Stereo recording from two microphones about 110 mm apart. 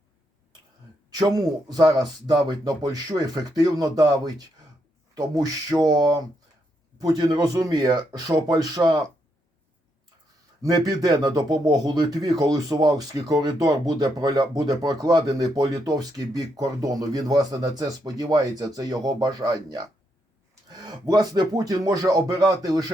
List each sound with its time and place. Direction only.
1.1 s speech: 35° right (ahead or behind)
10.6 s speech: 35° right (ahead or behind)